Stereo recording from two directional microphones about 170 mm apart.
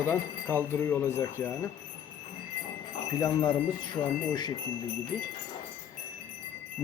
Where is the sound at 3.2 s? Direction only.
20° left (ahead or behind).